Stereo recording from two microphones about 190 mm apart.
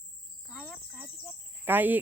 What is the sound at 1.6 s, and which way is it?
Speech, 10° right (ahead or behind).